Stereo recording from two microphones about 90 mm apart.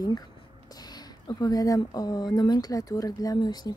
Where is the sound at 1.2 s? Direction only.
50° left (ahead or behind).